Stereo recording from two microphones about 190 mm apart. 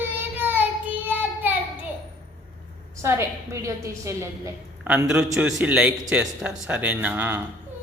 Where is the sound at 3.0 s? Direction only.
15° right (ahead or behind).